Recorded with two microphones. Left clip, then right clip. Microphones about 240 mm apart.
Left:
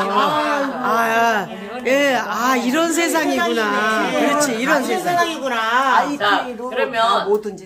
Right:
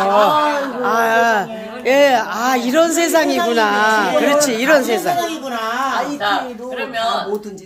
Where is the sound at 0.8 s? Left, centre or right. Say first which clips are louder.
Right 3 dB; centre.